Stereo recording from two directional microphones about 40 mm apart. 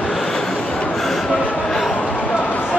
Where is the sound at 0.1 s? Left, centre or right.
Centre.